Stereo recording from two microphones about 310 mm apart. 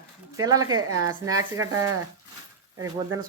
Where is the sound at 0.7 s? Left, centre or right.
Right.